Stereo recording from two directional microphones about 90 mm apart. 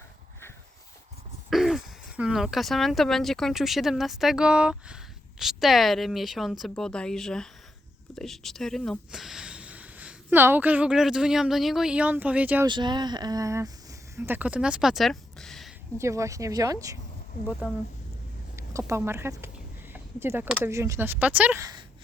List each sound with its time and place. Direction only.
1.5 s a sound: centre (ahead or behind)
2.1 s speech: 10° right (ahead or behind)
12.6 s speech: 55° right (ahead or behind); by 13.7 s 35° right (ahead or behind)
14.2 s speech: 20° right (ahead or behind); by 15.7 s 5° left (ahead or behind)
16.0 s speech: 35° right (ahead or behind)
17.6 s speech: 15° right (ahead or behind)
18.5 s speech: 30° right (ahead or behind)
19.9 s a sound: 25° right (ahead or behind)
20.7 s speech: 35° right (ahead or behind); by 21.6 s 15° right (ahead or behind)